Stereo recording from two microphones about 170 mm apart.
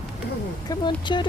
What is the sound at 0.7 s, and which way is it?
Speech, 25° left (ahead or behind).